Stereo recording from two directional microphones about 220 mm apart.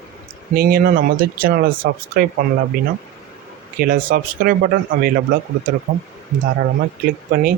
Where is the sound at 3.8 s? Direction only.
40° right (ahead or behind).